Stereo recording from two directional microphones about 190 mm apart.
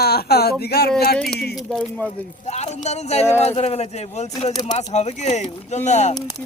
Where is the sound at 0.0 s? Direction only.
55° left (ahead or behind).